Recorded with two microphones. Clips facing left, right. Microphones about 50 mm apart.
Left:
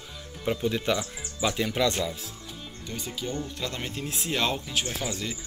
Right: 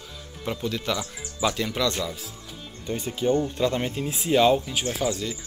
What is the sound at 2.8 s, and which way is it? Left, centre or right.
Speech, right.